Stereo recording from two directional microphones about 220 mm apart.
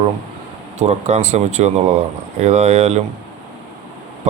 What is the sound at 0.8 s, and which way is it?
Speech, 30° right (ahead or behind).